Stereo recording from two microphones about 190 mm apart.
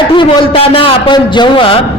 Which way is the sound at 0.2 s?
30° left (ahead or behind).